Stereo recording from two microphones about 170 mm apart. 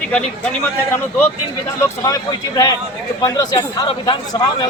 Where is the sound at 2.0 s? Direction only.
20° left (ahead or behind).